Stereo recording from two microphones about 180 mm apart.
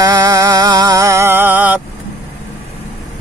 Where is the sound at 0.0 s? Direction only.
20° right (ahead or behind).